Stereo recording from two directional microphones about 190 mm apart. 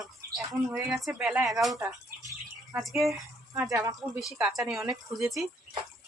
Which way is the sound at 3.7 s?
15° right (ahead or behind).